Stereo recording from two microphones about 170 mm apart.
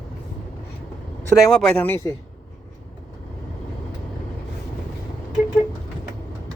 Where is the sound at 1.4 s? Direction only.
5° left (ahead or behind).